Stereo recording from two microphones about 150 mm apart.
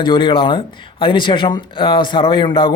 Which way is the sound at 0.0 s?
35° left (ahead or behind).